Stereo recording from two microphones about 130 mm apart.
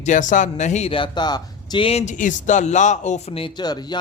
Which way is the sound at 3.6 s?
35° left (ahead or behind).